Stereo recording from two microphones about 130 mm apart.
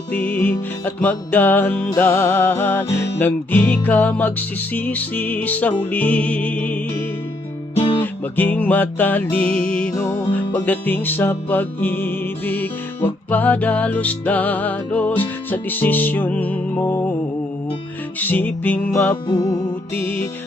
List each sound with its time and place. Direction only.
0.1 s music: 10° left (ahead or behind)
7.8 s guitar: 40° left (ahead or behind)
8.0 s music: 15° left (ahead or behind)
18.2 s music: 15° left (ahead or behind)
19.3 s music: 30° left (ahead or behind)